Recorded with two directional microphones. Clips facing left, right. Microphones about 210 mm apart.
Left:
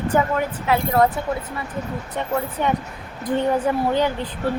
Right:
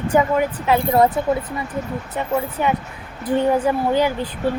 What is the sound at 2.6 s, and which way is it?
A woman's voice, 5° right (ahead or behind).